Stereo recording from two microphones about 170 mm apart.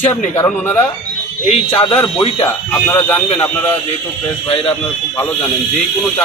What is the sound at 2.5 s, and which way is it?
Speech, 15° left (ahead or behind).